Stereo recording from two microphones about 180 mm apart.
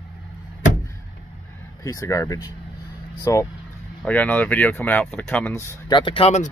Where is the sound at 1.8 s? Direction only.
15° left (ahead or behind).